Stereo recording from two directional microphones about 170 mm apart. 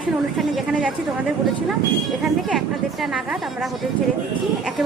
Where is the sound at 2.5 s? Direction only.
Centre (ahead or behind).